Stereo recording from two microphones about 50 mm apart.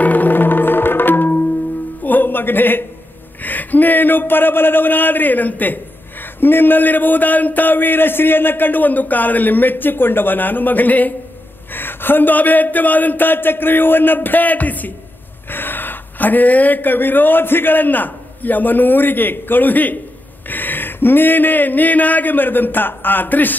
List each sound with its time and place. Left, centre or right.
0.0 s music: left
3.4 s speech: left
11.7 s speech: left